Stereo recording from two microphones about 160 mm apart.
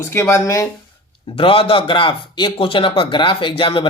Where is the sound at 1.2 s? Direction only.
35° left (ahead or behind).